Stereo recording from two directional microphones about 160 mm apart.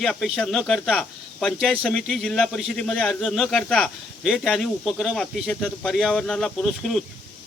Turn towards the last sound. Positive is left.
turn(degrees=0)  # may be behind; listen again after turning